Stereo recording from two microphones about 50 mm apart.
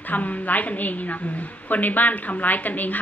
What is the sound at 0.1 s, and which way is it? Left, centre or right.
A woman's voice, left.